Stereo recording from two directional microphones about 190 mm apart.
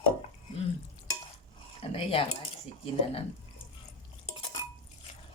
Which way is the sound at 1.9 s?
30° left (ahead or behind).